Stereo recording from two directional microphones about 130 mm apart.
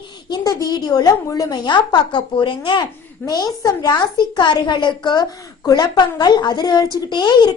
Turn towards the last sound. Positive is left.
turn(degrees=35)  # may be behind; listen again after turning